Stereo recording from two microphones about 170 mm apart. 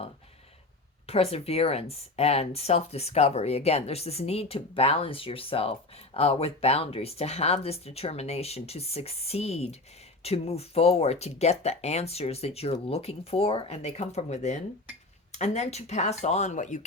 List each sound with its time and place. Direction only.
1.0 s speech: 35° left (ahead or behind)